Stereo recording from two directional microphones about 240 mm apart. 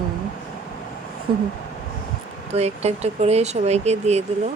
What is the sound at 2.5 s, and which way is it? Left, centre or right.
Speech, right.